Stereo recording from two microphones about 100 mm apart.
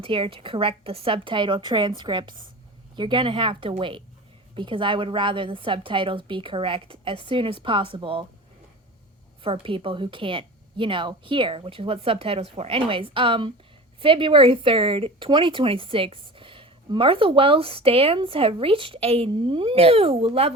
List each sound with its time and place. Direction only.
0.0 s speech: 65° right (ahead or behind)
9.4 s speech: 60° right (ahead or behind); by 20.5 s 80° right